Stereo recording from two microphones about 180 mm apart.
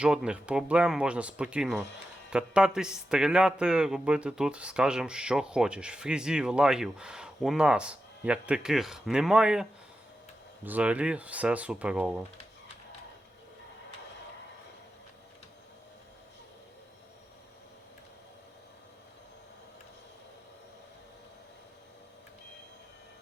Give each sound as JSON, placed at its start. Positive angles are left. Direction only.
{"t": 0.0, "sound": "a man's voice", "side_deg": -5}
{"t": 10.7, "sound": "speech", "side_deg": -5}